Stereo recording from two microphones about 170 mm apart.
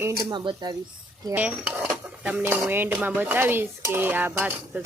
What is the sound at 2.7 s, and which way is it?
Dishes, 15° right (ahead or behind).